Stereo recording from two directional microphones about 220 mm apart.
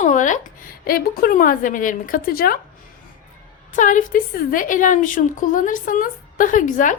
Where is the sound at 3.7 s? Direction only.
35° left (ahead or behind).